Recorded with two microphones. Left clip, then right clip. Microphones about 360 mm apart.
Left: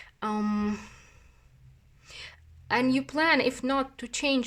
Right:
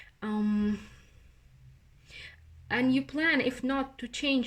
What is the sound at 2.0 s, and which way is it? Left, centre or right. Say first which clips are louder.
A woman's voice: left 3 dB; centre.